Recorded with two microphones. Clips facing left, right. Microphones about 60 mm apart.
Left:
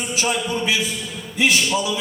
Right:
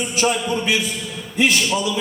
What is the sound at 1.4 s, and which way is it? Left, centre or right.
Speech, right.